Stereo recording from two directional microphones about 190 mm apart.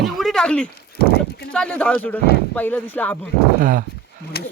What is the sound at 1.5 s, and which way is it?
Speech, 5° left (ahead or behind).